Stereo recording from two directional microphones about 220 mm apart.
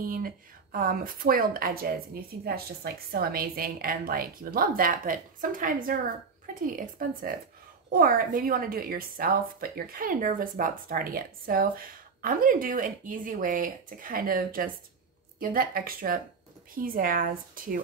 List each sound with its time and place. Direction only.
0.0 s a woman's voice: 40° right (ahead or behind)